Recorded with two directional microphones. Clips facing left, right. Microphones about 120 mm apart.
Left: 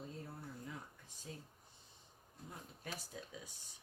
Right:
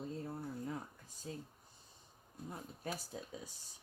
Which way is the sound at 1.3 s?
35° right (ahead or behind).